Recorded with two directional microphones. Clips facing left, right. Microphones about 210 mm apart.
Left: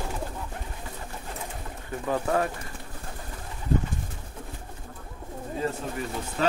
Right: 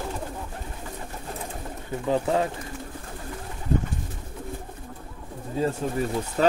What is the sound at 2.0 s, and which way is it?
Speech, 20° right (ahead or behind).